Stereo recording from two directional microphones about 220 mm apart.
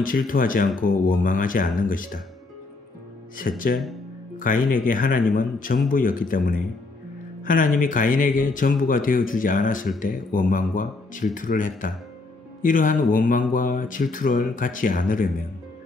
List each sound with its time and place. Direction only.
0.3 s speech: 40° left (ahead or behind)
3.3 s speech: 40° left (ahead or behind)